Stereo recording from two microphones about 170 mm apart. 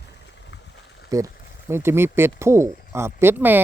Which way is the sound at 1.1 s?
20° right (ahead or behind).